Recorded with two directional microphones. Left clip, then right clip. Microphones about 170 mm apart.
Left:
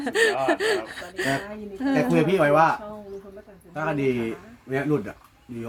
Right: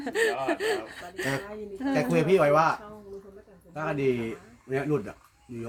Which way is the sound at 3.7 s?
5° right (ahead or behind).